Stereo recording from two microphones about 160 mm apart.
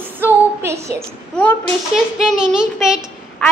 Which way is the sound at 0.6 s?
15° right (ahead or behind).